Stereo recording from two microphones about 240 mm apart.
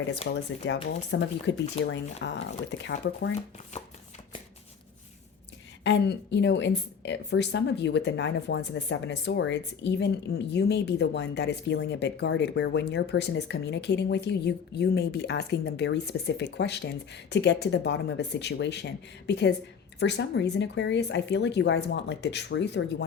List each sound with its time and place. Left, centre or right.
0.3 s a woman's voice: left
5.8 s a woman's voice: left